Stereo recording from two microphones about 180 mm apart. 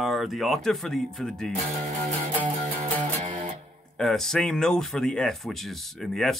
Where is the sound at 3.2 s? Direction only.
45° right (ahead or behind).